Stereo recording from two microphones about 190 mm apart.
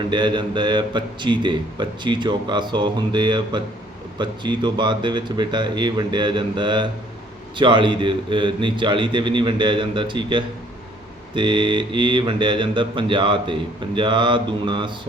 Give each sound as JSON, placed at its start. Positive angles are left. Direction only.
{"t": 0.0, "sound": "speech", "side_deg": -25}